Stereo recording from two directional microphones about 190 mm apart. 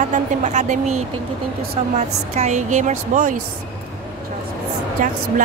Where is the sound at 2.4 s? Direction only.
40° right (ahead or behind).